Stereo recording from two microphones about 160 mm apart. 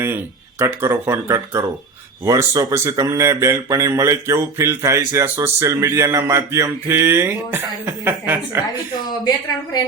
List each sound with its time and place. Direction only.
0.6 s speech: 15° right (ahead or behind)